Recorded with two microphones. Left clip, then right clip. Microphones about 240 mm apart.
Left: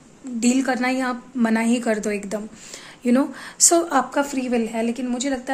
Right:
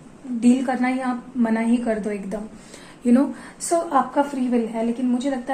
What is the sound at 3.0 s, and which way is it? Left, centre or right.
Speech, left.